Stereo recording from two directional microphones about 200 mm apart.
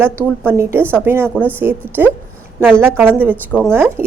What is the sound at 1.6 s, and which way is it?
A woman's voice, 10° right (ahead or behind).